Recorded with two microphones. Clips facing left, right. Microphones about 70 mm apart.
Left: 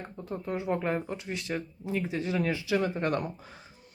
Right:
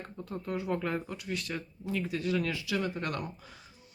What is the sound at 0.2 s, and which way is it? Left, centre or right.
Speech, left.